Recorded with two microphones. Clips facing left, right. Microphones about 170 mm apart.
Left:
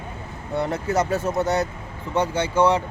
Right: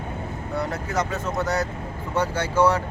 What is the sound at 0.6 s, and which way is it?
Speech, 25° left (ahead or behind).